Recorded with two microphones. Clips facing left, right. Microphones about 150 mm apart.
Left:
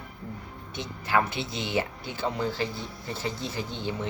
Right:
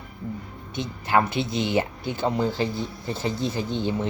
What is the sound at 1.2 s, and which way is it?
Speech, 15° right (ahead or behind).